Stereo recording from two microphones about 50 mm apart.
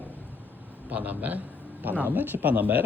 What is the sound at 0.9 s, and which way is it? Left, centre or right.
Speech, right.